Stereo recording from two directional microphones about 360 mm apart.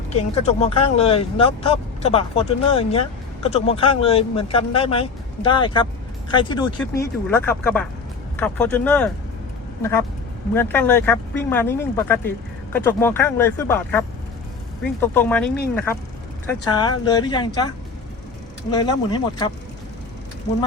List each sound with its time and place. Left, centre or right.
0.1 s speech: centre
10.5 s speech: centre
15.0 s speech: centre
18.7 s speech: centre